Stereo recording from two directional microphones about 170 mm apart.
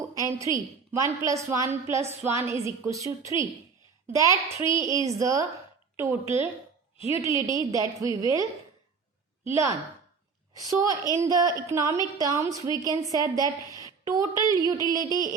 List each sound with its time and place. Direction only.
0.0 s a woman's voice: 20° right (ahead or behind)